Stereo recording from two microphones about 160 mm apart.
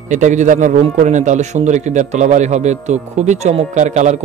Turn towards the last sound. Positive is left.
turn(degrees=-50)  # may be behind; listen again after turning